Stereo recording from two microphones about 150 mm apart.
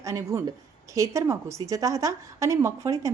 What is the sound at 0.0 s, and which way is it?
A woman's voice, 20° right (ahead or behind).